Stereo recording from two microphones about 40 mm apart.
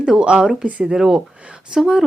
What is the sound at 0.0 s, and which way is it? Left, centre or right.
Speech, right.